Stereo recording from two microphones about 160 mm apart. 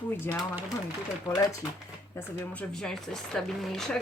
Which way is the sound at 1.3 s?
20° left (ahead or behind).